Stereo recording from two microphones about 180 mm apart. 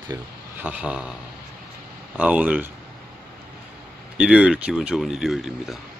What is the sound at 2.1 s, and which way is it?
Speech, 10° right (ahead or behind).